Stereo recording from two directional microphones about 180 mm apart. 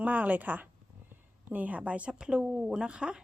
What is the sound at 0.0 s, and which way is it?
A woman's voice, 10° right (ahead or behind).